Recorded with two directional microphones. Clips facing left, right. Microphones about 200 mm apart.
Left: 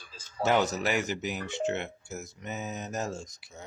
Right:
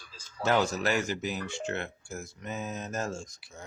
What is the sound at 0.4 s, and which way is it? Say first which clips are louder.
Speech: even; 20° left (ahead or behind).